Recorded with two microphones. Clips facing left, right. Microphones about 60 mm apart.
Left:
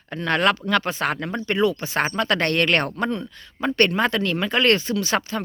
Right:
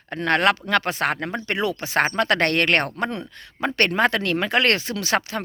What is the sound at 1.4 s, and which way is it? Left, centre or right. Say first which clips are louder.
Speech: left 3 dB; right.